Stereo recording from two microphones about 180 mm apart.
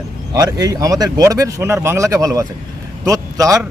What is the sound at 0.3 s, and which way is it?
A man's voice, 20° right (ahead or behind).